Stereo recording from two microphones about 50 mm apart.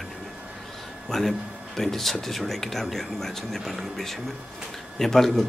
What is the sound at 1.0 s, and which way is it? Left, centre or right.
Speech, centre.